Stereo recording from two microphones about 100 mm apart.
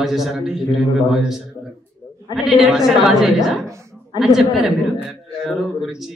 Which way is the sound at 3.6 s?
30° right (ahead or behind).